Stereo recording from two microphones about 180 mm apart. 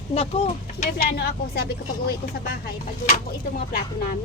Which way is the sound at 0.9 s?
60° left (ahead or behind).